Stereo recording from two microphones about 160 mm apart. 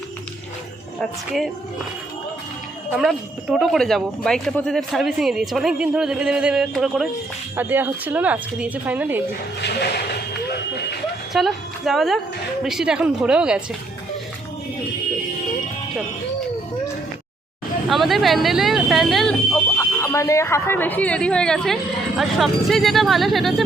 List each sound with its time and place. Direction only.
0.9 s speech: centre (ahead or behind)
3.0 s speech: centre (ahead or behind)
7.5 s speech: 10° right (ahead or behind)
9.6 s speech: 90° left
11.3 s a woman's voice: centre (ahead or behind)
17.8 s speech: centre (ahead or behind)
19.7 s speech: 20° left (ahead or behind); by 23.6 s centre (ahead or behind)